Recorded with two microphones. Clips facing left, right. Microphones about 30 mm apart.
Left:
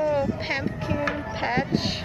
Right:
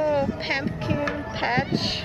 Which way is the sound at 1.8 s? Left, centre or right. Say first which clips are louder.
Right 1 dB; centre.